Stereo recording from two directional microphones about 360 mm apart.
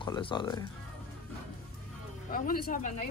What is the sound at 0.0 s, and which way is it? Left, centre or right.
Speech, centre.